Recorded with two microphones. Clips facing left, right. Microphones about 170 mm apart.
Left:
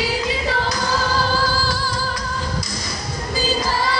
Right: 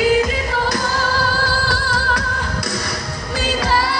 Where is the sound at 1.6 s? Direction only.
65° right (ahead or behind).